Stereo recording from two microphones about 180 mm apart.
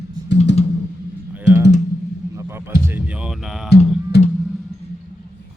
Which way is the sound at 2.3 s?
15° right (ahead or behind).